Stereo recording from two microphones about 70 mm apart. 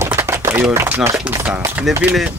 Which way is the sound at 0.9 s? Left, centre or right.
Right.